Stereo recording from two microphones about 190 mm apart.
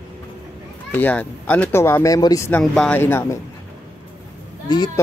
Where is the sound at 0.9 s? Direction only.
10° left (ahead or behind).